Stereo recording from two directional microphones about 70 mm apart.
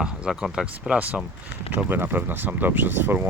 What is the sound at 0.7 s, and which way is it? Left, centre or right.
Speech, right.